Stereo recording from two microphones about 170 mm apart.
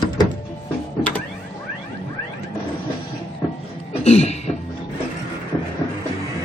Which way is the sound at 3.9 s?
40° left (ahead or behind).